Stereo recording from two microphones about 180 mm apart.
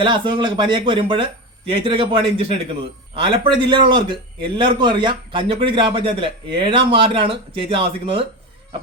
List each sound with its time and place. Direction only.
0.0 s a man's voice: 25° right (ahead or behind)